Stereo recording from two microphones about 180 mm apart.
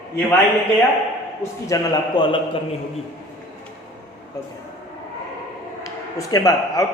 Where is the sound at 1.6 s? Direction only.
20° left (ahead or behind).